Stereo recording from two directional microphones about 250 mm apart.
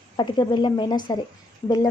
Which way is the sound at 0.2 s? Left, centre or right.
Centre.